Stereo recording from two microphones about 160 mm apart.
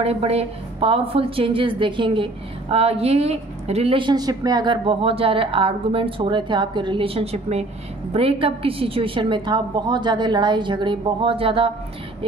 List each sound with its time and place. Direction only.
0.0 s a woman's voice: 40° right (ahead or behind)